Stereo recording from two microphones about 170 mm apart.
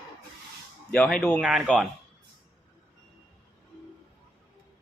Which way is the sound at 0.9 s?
5° left (ahead or behind).